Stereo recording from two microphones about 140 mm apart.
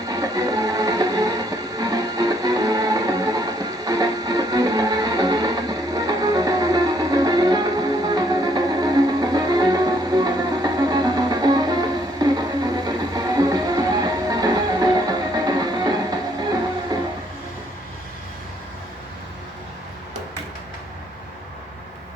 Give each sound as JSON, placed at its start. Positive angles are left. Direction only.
{"t": 0.1, "sound": "music", "side_deg": -25}